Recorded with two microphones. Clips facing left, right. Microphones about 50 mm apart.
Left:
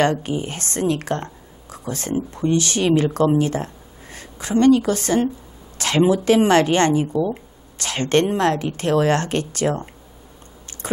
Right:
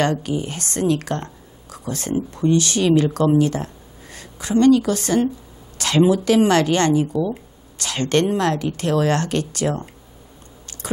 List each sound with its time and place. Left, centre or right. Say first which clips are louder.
0.0 s speech: left 1 dB; left